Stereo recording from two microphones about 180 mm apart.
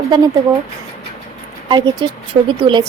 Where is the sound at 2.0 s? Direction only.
25° right (ahead or behind).